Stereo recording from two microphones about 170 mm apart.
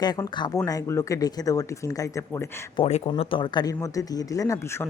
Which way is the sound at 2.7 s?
30° left (ahead or behind).